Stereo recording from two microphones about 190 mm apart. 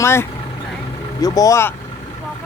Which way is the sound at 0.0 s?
15° left (ahead or behind).